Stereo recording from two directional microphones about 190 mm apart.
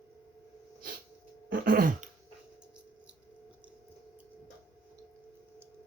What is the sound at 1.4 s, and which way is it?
Throat clearing, 50° right (ahead or behind).